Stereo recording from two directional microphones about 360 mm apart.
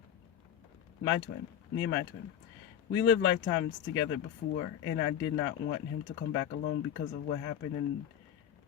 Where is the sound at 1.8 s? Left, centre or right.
Left.